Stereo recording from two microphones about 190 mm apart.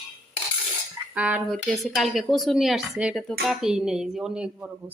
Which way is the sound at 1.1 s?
5° right (ahead or behind).